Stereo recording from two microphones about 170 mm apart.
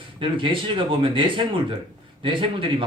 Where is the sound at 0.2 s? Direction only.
30° right (ahead or behind).